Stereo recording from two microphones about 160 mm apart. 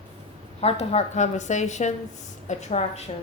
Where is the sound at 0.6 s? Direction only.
40° left (ahead or behind).